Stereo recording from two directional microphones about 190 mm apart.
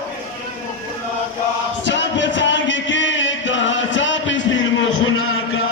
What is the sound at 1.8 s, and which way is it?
Chant, 75° left (ahead or behind).